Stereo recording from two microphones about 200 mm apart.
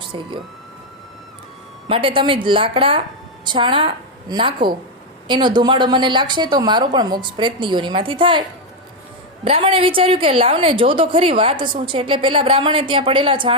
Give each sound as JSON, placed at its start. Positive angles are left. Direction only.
{"t": 0.0, "sound": "speech", "side_deg": -25}
{"t": 1.9, "sound": "a woman's voice", "side_deg": -25}